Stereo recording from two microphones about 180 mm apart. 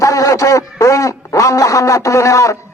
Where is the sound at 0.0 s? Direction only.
20° left (ahead or behind).